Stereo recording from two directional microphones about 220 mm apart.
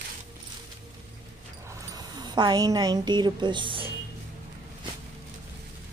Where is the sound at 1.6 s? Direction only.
15° right (ahead or behind).